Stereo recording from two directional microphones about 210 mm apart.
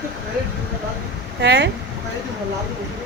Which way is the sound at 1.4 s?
55° right (ahead or behind).